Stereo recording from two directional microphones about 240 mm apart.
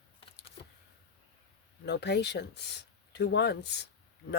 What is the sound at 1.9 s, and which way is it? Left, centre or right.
Speech, left.